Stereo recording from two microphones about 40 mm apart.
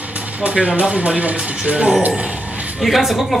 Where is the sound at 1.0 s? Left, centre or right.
Right.